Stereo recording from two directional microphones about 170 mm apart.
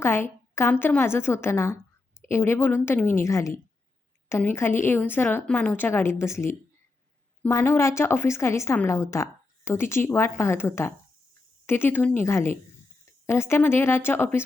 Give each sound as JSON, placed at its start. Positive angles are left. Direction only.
{"t": 0.0, "sound": "a woman's voice", "side_deg": 15}